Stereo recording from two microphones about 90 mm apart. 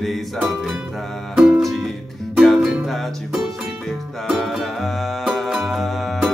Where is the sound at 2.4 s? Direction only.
5° left (ahead or behind).